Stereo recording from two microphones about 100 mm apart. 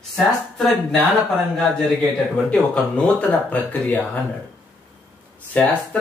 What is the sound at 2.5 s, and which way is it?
Speech, 15° left (ahead or behind).